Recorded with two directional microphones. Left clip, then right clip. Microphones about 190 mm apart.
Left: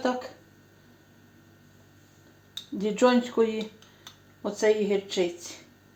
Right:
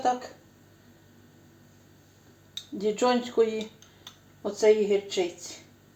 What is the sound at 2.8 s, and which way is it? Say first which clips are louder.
Speech: left 2 dB; 25° left (ahead or behind).